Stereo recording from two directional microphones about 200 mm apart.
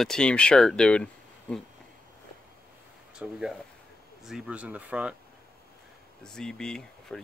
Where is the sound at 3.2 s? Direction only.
5° right (ahead or behind).